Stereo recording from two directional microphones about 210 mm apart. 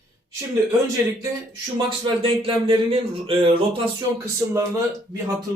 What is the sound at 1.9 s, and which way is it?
Speech, 25° right (ahead or behind).